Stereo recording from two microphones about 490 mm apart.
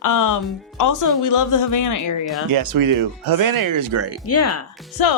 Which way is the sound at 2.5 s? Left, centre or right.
Right.